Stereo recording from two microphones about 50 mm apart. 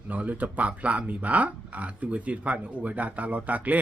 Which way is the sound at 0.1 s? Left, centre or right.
Right.